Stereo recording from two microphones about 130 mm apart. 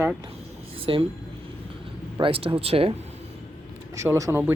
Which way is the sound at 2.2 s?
45° right (ahead or behind).